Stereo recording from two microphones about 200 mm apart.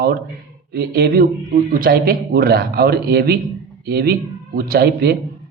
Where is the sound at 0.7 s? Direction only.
50° right (ahead or behind).